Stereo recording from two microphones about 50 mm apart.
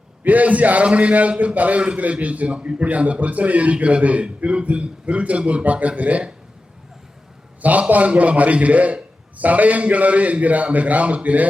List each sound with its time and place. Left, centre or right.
0.2 s a man's voice: right
7.6 s a man's voice: right